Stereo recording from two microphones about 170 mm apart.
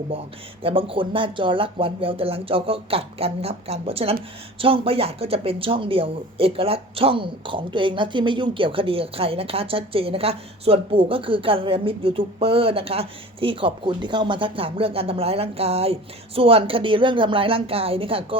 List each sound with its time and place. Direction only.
0.1 s speech: 35° right (ahead or behind)